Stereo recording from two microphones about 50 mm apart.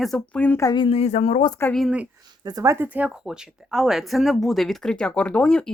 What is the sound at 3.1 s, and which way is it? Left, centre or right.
Speech, centre.